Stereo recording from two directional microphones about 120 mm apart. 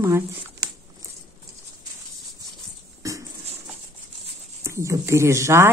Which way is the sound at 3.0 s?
25° right (ahead or behind).